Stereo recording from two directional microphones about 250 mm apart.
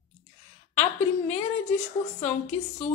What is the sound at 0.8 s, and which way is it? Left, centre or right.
Speech, left.